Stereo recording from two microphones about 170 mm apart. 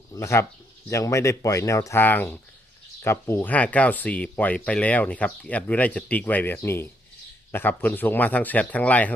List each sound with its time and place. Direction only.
0.1 s speech: 15° left (ahead or behind)